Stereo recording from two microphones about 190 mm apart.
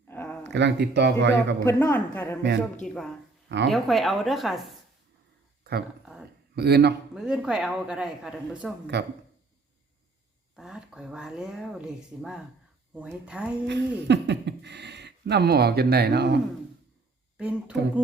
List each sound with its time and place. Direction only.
0.1 s a sound: 10° left (ahead or behind)
0.5 s speech: 65° right (ahead or behind)
1.6 s a woman's voice: 15° left (ahead or behind)
5.7 s speech: 60° right (ahead or behind)
7.1 s speech: 5° right (ahead or behind)
8.9 s speech: 65° right (ahead or behind)
10.5 s speech: centre (ahead or behind)
13.7 s speech: 65° right (ahead or behind)
17.3 s speech: 5° right (ahead or behind)